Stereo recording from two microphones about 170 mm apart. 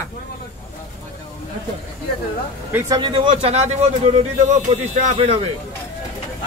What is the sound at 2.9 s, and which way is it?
A man's voice, 30° right (ahead or behind).